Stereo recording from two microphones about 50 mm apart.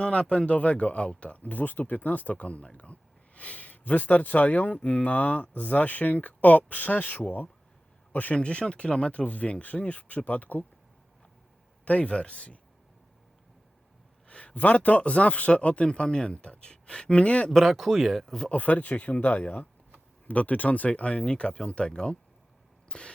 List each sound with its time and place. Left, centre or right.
0.0 s speech: centre
4.8 s speech: centre
5.0 s speech: left
8.4 s speech: centre
11.9 s speech: left
14.3 s speech: left
17.5 s speech: centre
18.5 s speech: left
22.9 s a sound: centre